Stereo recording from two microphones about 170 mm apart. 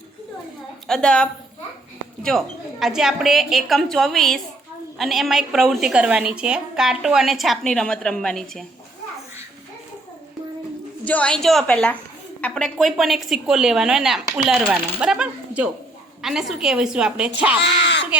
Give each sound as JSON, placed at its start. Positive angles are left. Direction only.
{"t": 0.9, "sound": "a woman's voice", "side_deg": 5}
{"t": 11.0, "sound": "a woman's voice", "side_deg": 10}
{"t": 17.6, "sound": "a sound", "side_deg": 90}